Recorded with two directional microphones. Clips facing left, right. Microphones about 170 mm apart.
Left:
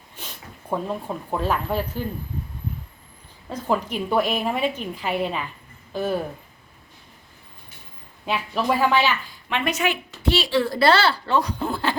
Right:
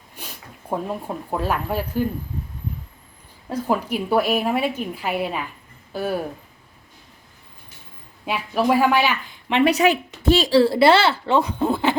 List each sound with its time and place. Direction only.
0.2 s speech: 10° right (ahead or behind)
3.5 s a woman's voice: 10° right (ahead or behind)
8.3 s a woman's voice: 10° right (ahead or behind)
9.6 s a woman's voice: 40° right (ahead or behind); by 11.9 s 20° right (ahead or behind)